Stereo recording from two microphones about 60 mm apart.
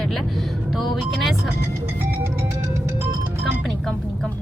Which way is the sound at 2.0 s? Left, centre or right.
Right.